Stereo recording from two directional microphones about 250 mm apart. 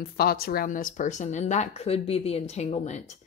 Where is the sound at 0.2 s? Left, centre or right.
Left.